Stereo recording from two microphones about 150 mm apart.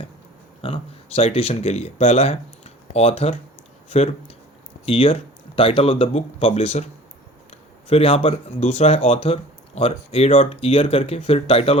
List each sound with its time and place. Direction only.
0.6 s speech: 40° left (ahead or behind)
7.9 s speech: 40° left (ahead or behind)